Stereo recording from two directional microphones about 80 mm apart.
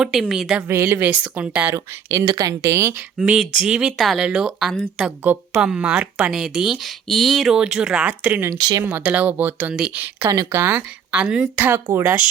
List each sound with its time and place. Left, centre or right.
0.0 s a woman's voice: centre
0.7 s speech: right
1.0 s speech: centre
2.2 s speech: right
3.2 s speech: centre
4.7 s a woman's voice: centre
5.2 s speech: right
5.6 s speech: centre
8.5 s speech: right
8.8 s speech: right
11.9 s speech: right